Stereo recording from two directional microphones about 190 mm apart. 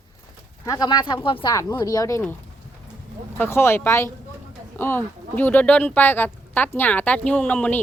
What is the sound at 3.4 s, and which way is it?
Speech, 15° left (ahead or behind).